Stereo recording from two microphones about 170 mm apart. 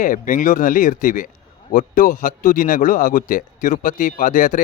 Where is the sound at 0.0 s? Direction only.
50° left (ahead or behind).